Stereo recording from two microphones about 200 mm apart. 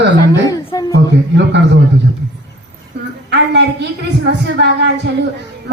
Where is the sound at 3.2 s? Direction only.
60° right (ahead or behind).